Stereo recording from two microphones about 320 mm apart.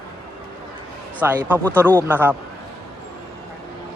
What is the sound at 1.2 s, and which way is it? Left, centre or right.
Speech, centre.